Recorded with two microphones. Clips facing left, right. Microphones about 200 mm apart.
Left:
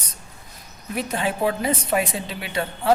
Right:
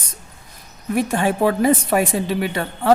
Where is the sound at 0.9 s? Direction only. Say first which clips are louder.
Right 6 dB; 50° right (ahead or behind).